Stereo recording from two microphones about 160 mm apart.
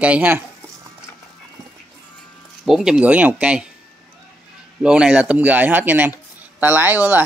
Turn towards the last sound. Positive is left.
turn(degrees=-10)  # may be behind; listen again after turning